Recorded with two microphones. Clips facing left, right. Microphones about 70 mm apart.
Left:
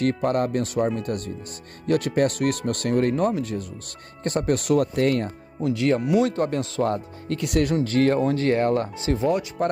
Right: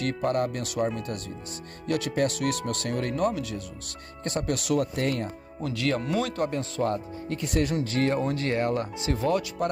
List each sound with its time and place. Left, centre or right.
0.0 s speech: left
5.6 s speech: left
6.2 s speech: left
6.5 s speech: left
7.6 s speech: left
8.2 s speech: left